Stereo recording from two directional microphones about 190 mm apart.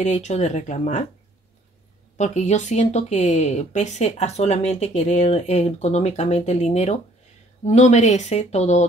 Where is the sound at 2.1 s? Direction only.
35° left (ahead or behind).